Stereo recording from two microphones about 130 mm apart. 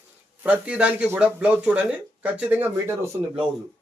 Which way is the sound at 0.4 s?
10° right (ahead or behind).